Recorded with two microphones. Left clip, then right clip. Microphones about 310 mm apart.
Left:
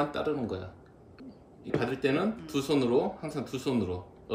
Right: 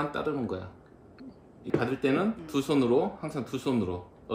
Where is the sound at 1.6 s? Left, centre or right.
Centre.